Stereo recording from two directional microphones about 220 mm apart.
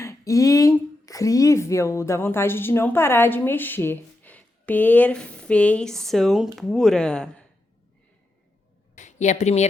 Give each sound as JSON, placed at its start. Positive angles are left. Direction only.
{"t": 0.0, "sound": "speech", "side_deg": 15}
{"t": 9.0, "sound": "speech", "side_deg": 30}